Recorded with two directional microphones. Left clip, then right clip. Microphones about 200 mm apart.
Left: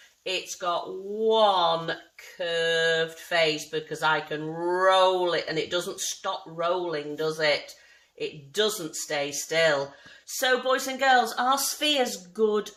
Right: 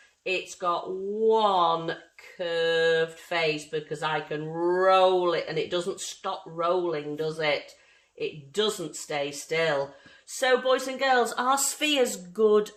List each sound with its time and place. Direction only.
0.3 s speech: 25° right (ahead or behind); by 12.7 s 50° right (ahead or behind)